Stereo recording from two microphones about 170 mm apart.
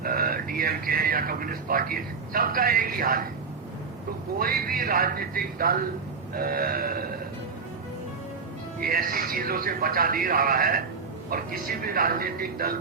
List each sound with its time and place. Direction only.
0.0 s speech: 60° right (ahead or behind)
4.4 s speech: 60° right (ahead or behind)
8.8 s speech: 60° right (ahead or behind)